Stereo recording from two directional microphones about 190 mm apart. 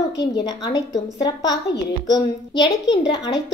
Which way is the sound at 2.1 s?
20° left (ahead or behind).